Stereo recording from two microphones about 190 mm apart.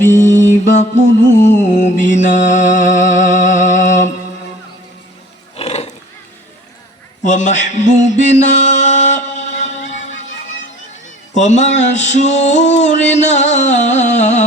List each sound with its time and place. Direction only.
0.3 s mantra: 15° left (ahead or behind)
0.6 s music: 40° left (ahead or behind)
1.4 s music: 65° left (ahead or behind)
1.6 s music: 40° left (ahead or behind)
5.5 s roaring cats: 35° left (ahead or behind)
7.3 s mantra: 40° left (ahead or behind)
11.3 s music: 40° left (ahead or behind)